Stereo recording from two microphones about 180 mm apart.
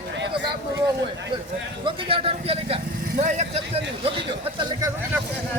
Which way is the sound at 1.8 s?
30° right (ahead or behind).